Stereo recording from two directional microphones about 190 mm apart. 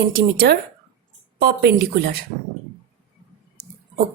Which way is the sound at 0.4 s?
55° right (ahead or behind).